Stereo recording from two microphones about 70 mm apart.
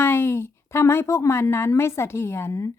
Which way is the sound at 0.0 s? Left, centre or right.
Left.